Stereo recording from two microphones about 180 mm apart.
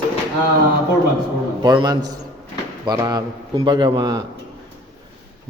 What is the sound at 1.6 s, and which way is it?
Speech, 20° right (ahead or behind).